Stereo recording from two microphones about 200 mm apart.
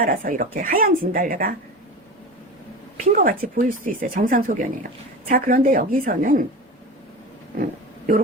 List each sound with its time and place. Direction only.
0.0 s speech: 45° right (ahead or behind)
3.0 s speech: 45° right (ahead or behind)
7.6 s a sound: 40° right (ahead or behind)